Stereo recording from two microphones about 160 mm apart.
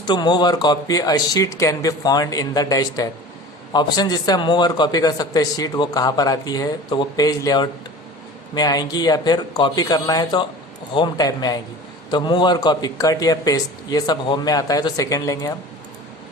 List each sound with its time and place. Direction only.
0.0 s speech: 25° left (ahead or behind)